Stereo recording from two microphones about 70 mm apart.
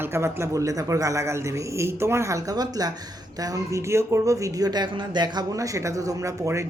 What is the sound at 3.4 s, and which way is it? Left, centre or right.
A man's voice, right.